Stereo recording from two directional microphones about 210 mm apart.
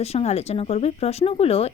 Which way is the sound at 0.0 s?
30° left (ahead or behind).